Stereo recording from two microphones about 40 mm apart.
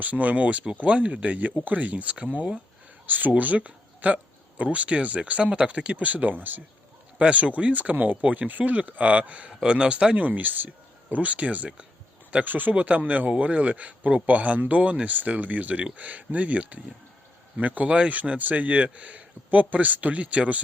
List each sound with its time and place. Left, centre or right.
0.0 s speech: right
3.1 s speech: right
7.2 s speech: right
9.5 s speech: centre
10.2 s speech: right
10.7 s speech: right
12.5 s speech: right
17.8 s speech: right
18.1 s speech: right